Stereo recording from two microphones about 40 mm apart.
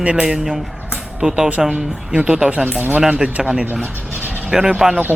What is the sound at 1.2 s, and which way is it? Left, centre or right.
Speech, centre.